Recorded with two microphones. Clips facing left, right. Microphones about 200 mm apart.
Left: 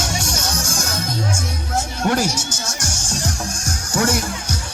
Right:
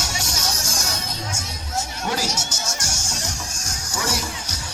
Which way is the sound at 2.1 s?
55° left (ahead or behind).